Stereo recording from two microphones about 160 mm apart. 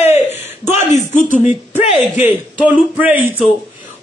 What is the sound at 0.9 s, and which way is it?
Speech, 55° left (ahead or behind).